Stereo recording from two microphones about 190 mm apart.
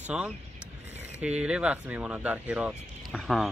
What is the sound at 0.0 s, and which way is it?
Speech, 5° right (ahead or behind).